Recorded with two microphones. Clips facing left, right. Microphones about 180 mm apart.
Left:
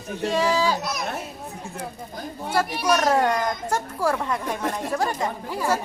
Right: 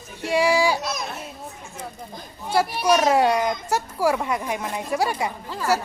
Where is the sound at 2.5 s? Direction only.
10° right (ahead or behind).